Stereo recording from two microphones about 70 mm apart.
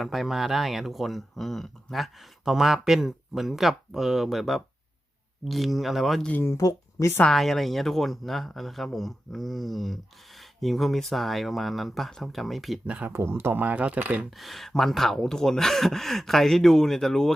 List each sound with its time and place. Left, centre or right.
0.0 s speech: centre
6.6 s speech: left
7.3 s speech: centre
12.8 s speech: right
13.1 s speech: right
14.3 s speech: centre